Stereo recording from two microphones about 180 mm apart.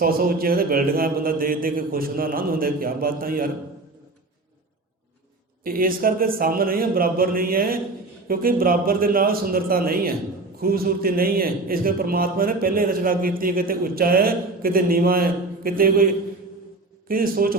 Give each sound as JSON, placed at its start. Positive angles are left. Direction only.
{"t": 0.0, "sound": "a man's voice", "side_deg": -55}
{"t": 5.6, "sound": "a man's voice", "side_deg": -50}
{"t": 17.1, "sound": "a man's voice", "side_deg": -55}